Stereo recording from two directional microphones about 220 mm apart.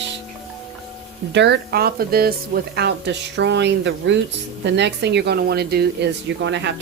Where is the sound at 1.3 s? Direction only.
50° right (ahead or behind).